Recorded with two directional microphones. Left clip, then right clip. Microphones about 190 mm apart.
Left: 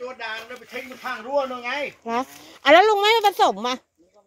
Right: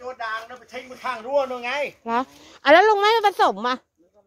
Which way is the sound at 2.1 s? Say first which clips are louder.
Right 2 dB; 5° right (ahead or behind).